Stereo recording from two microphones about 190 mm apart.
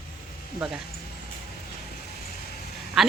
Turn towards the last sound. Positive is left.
turn(degrees=0)  # may be behind; listen again after turning